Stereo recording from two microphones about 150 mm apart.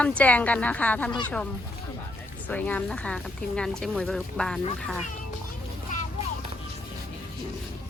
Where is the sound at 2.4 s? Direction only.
10° left (ahead or behind).